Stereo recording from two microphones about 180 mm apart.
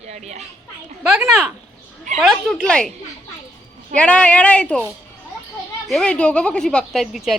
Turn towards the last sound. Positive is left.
turn(degrees=0)  # may be behind; listen again after turning